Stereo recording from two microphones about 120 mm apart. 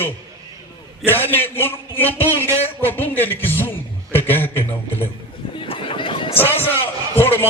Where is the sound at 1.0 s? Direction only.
20° left (ahead or behind).